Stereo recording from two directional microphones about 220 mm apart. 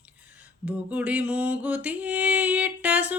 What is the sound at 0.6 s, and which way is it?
Mantra, 5° right (ahead or behind).